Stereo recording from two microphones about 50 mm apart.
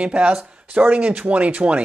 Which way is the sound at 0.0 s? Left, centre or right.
Right.